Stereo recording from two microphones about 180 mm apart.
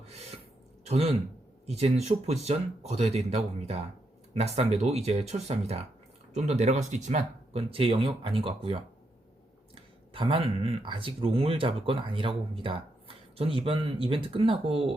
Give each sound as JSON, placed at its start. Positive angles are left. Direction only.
{"t": 0.1, "sound": "a sound", "side_deg": -35}
{"t": 0.9, "sound": "speech", "side_deg": -35}
{"t": 10.1, "sound": "speech", "side_deg": -30}